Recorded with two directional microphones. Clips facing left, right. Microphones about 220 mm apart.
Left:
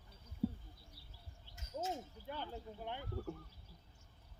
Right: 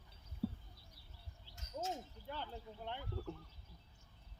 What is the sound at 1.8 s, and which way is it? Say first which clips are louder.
Speech: left 1 dB; 15° left (ahead or behind).